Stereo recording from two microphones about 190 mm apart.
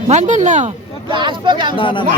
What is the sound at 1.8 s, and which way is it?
Speech, 25° left (ahead or behind).